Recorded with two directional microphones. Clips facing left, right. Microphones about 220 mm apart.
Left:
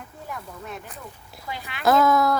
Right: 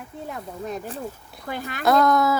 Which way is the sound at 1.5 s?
50° right (ahead or behind).